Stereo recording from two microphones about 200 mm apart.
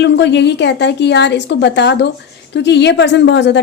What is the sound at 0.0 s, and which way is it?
A woman's voice, 60° left (ahead or behind).